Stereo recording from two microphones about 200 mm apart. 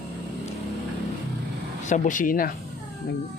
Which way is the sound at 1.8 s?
40° left (ahead or behind).